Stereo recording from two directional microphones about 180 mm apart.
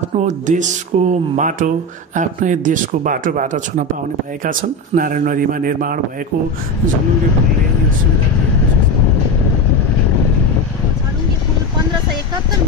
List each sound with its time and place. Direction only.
0.1 s speech: 40° right (ahead or behind)